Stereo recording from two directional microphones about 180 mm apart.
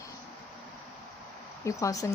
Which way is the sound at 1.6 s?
20° left (ahead or behind).